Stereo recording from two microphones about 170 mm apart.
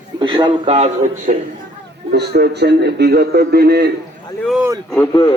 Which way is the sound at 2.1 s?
70° right (ahead or behind).